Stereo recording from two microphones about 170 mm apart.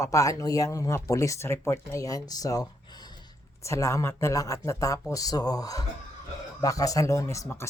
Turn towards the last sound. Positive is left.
turn(degrees=15)  # may be behind; listen again after turning